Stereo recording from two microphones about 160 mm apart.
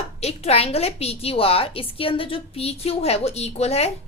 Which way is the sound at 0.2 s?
40° left (ahead or behind).